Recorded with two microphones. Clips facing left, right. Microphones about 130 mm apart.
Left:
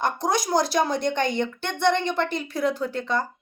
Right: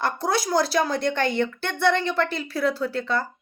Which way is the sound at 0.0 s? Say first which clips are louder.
Even; 15° left (ahead or behind).